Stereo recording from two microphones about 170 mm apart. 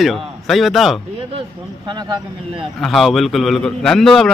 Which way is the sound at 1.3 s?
25° right (ahead or behind).